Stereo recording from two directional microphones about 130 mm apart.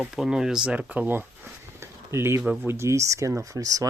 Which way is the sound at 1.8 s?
20° right (ahead or behind).